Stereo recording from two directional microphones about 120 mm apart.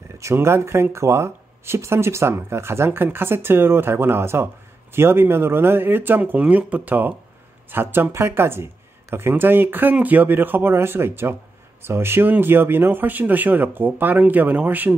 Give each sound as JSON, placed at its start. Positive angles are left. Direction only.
{"t": 0.2, "sound": "speech", "side_deg": -20}